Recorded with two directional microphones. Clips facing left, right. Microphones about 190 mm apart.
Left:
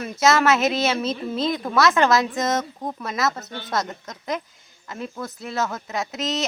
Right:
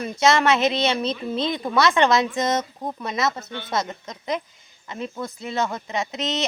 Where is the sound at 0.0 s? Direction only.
5° left (ahead or behind).